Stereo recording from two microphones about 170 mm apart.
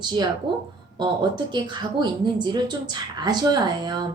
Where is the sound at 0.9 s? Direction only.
25° right (ahead or behind).